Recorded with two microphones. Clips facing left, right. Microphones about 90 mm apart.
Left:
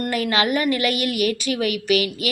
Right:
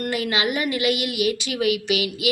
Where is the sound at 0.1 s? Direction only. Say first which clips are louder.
Left 4 dB; 45° left (ahead or behind).